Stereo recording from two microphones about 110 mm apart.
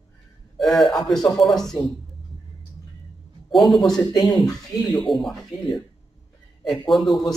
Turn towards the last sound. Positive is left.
turn(degrees=0)  # may be behind; listen again after turning